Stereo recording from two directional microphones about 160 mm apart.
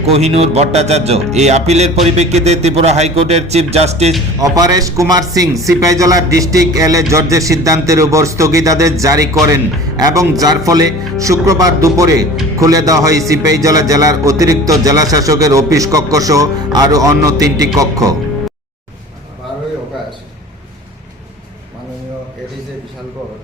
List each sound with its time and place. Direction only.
0.0 s speech: 40° right (ahead or behind)
4.4 s a man's voice: 25° right (ahead or behind)